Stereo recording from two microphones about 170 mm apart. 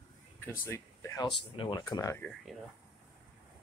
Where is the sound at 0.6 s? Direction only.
15° left (ahead or behind).